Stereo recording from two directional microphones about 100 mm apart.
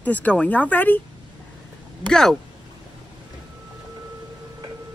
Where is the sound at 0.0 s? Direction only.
15° left (ahead or behind).